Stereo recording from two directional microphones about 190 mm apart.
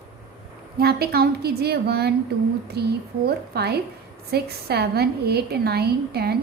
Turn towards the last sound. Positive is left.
turn(degrees=-55)  # may be behind; listen again after turning